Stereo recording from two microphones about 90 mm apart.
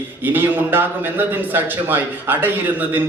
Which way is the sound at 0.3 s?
25° right (ahead or behind).